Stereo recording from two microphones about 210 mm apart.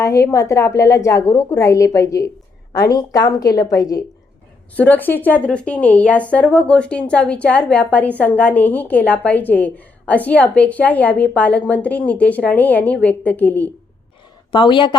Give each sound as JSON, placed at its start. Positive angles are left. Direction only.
{"t": 0.0, "sound": "a woman's voice", "side_deg": 15}
{"t": 14.5, "sound": "a woman's voice", "side_deg": 25}